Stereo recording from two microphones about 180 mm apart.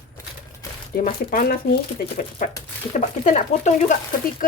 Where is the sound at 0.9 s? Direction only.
50° left (ahead or behind).